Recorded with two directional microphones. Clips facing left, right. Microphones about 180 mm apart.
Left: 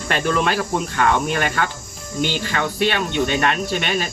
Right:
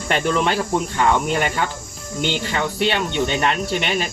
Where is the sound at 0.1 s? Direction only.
20° right (ahead or behind).